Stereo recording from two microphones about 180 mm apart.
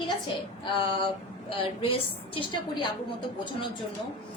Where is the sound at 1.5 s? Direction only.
30° left (ahead or behind).